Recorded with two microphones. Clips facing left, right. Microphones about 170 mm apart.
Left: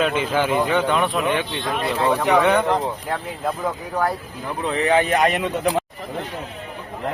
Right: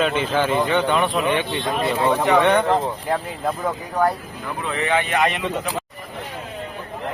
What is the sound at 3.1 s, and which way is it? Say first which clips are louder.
Speech: right 2 dB; centre (ahead or behind).